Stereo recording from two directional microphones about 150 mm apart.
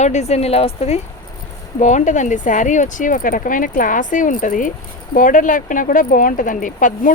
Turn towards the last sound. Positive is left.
turn(degrees=60)  # may be behind; listen again after turning